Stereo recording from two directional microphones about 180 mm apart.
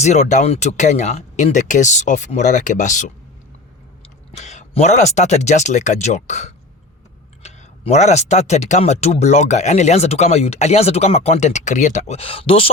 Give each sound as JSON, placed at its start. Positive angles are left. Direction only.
{"t": 0.0, "sound": "speech", "side_deg": 40}
{"t": 4.3, "sound": "speech", "side_deg": 40}